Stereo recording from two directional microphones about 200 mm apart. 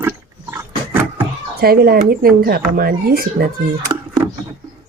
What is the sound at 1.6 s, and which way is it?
Speech, 50° right (ahead or behind).